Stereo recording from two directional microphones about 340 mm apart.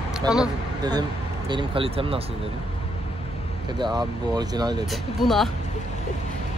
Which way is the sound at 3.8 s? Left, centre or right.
Centre.